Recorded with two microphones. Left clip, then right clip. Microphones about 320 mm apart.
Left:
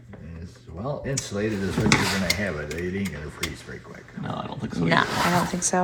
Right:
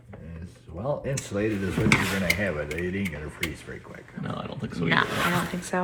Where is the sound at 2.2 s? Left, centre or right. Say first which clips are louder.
Even; right.